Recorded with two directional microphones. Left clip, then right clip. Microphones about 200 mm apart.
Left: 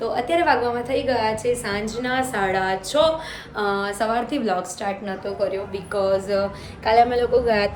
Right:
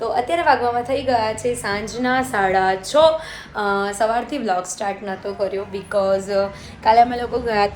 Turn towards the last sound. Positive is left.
turn(degrees=5)  # may be behind; listen again after turning